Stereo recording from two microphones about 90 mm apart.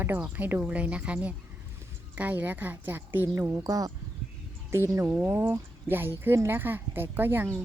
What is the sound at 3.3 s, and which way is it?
A woman's voice, 35° right (ahead or behind).